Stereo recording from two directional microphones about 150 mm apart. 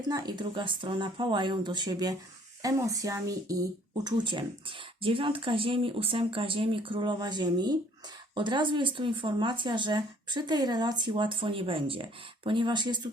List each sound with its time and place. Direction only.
0.1 s speech: 25° right (ahead or behind)